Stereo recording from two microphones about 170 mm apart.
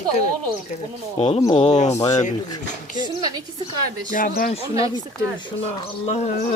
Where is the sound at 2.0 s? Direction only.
20° left (ahead or behind).